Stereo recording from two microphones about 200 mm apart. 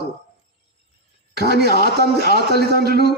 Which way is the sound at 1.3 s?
55° right (ahead or behind).